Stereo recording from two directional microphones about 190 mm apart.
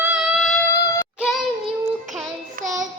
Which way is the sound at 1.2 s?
Centre (ahead or behind).